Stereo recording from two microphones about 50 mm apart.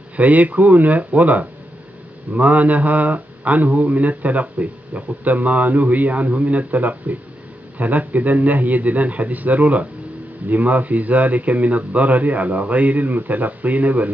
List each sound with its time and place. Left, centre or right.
0.1 s speech: right